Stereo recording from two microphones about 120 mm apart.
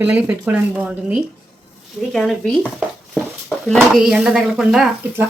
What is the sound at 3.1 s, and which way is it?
Dishes, 5° left (ahead or behind).